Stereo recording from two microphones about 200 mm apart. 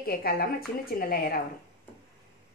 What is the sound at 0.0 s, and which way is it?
A woman's voice, 50° left (ahead or behind).